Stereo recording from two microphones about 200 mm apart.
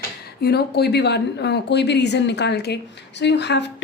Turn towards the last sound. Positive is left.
turn(degrees=60)  # may be behind; listen again after turning